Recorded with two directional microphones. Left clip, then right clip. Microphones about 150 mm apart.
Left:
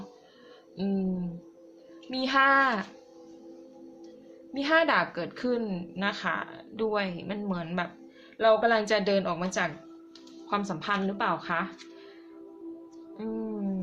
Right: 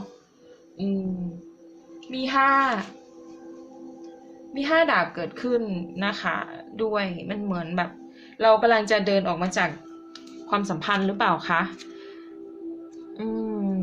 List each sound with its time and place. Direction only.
2.0 s a woman's voice: 30° left (ahead or behind)
4.5 s a woman's voice: 25° left (ahead or behind)
10.5 s speech: centre (ahead or behind)
13.1 s music: 5° right (ahead or behind)